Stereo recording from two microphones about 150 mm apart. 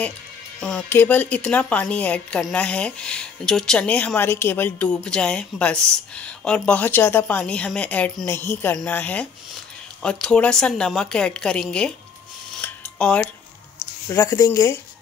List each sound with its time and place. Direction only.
0.6 s a woman's voice: 5° left (ahead or behind)
12.6 s a sound: 10° left (ahead or behind)
14.0 s speech: 20° left (ahead or behind)